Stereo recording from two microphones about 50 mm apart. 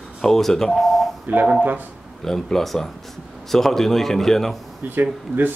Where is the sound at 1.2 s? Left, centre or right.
Right.